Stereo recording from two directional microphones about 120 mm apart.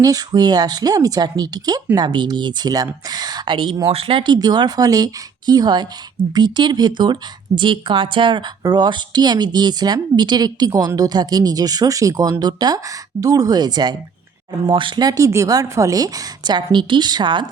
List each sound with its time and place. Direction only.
0.0 s speech: 30° right (ahead or behind)